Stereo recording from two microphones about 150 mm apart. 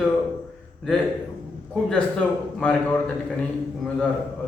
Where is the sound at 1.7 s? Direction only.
5° left (ahead or behind).